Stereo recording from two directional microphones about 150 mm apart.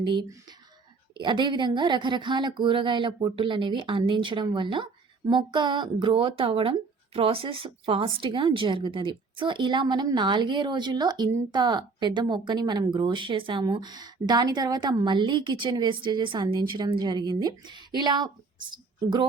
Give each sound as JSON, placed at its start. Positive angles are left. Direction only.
{"t": 0.0, "sound": "a woman's voice", "side_deg": -30}